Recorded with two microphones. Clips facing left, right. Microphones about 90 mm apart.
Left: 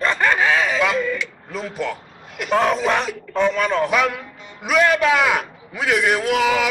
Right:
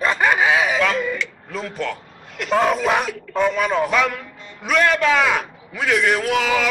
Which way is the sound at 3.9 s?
5° left (ahead or behind).